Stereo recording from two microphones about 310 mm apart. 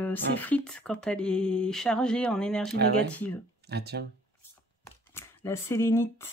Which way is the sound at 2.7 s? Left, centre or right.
Right.